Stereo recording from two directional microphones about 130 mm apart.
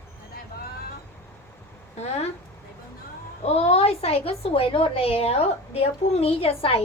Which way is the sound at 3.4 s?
50° left (ahead or behind).